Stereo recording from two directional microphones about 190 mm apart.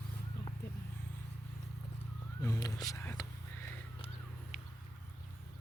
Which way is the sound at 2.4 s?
15° left (ahead or behind).